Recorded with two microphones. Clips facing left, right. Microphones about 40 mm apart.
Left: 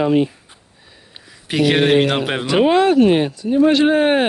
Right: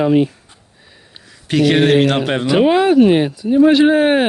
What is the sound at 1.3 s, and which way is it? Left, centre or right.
Speech, centre.